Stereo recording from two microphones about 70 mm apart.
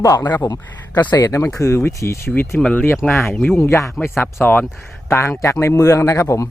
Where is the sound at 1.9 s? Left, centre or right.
Left.